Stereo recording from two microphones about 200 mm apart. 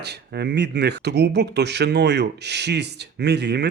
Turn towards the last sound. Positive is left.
turn(degrees=-55)  # may be behind; listen again after turning